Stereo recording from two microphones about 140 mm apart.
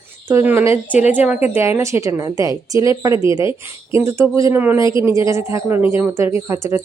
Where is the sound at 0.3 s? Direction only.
15° right (ahead or behind).